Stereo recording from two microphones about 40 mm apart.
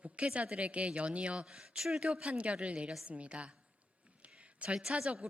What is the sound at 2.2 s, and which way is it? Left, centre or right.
Speech, right.